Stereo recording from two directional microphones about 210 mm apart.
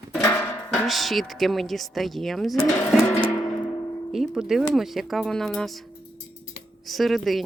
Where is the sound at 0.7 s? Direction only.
Centre (ahead or behind).